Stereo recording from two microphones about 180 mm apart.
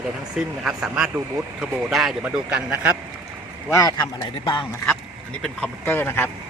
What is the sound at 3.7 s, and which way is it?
Speech, 20° left (ahead or behind).